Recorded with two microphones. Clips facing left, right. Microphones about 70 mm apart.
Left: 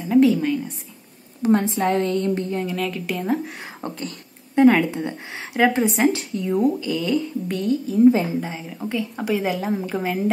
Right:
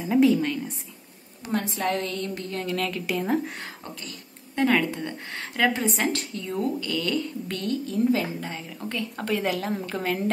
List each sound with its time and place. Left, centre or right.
0.0 s a woman's voice: centre
1.4 s a woman's voice: left
2.6 s a woman's voice: centre
3.8 s speech: left
4.6 s speech: centre
8.1 s speech: centre